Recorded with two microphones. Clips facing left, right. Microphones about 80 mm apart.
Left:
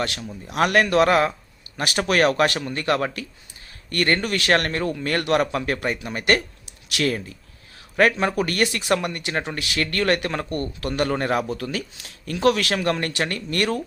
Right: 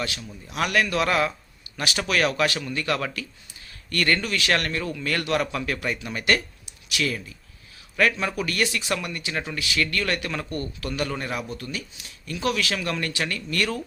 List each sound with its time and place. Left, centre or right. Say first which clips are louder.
0.5 s speech: left 5 dB; left
4.2 s speech: left 4 dB; left
8.4 s speech: left 4 dB; left
11.4 s speech: left 6 dB; left